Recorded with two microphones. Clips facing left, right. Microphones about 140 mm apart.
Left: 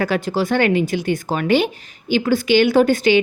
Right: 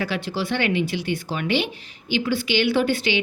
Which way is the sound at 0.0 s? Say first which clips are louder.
Left 6 dB; 45° left (ahead or behind).